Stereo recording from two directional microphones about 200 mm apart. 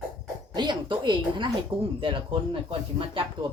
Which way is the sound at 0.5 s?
20° right (ahead or behind).